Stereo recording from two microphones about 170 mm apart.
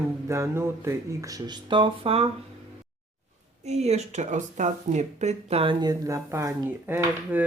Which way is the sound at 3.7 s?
40° right (ahead or behind).